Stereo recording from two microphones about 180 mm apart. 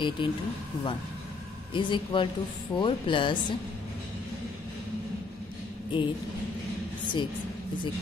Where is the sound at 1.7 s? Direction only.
25° left (ahead or behind).